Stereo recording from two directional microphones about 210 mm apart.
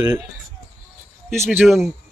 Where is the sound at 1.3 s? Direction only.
10° right (ahead or behind).